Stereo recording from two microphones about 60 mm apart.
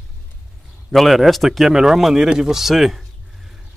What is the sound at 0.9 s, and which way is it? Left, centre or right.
Speech, centre.